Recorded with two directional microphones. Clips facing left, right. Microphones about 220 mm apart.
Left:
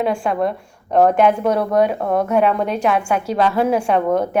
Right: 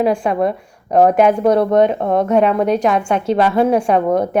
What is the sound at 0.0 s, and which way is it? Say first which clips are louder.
A woman's voice: right 3 dB; centre (ahead or behind).